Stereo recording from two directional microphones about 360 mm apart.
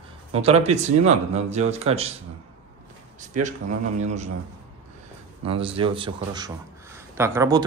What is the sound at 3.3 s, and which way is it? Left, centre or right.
Speech, centre.